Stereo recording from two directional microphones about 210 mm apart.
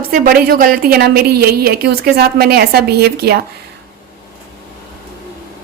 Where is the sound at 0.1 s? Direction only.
45° right (ahead or behind).